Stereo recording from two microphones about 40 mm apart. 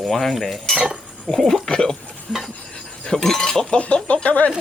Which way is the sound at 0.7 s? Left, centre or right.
Centre.